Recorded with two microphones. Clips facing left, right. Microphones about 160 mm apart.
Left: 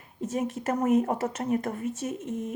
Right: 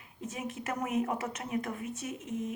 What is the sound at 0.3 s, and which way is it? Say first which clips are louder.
Speech: left 8 dB; 45° left (ahead or behind).